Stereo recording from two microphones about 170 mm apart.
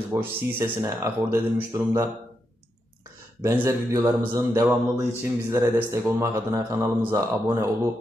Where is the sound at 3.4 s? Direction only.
15° right (ahead or behind).